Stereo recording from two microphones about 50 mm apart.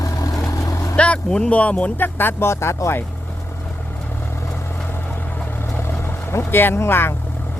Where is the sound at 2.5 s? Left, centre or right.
Left.